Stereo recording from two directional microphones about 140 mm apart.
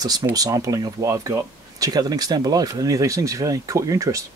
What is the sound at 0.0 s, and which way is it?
Speech, 25° right (ahead or behind).